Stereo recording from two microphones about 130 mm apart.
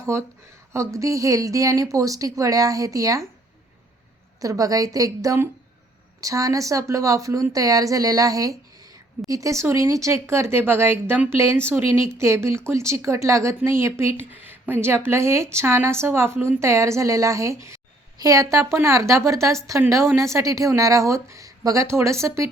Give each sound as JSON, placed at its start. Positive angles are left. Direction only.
{"t": 0.0, "sound": "speech", "side_deg": -20}
{"t": 4.4, "sound": "speech", "side_deg": -25}